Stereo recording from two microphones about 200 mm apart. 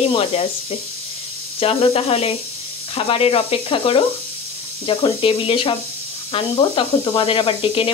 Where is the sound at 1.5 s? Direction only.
30° left (ahead or behind).